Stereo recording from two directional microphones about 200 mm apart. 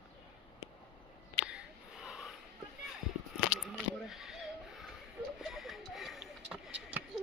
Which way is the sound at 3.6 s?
Centre (ahead or behind).